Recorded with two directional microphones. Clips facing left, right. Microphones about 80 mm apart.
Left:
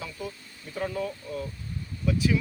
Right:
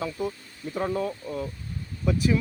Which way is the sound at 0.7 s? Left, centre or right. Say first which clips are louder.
Right 3 dB; right.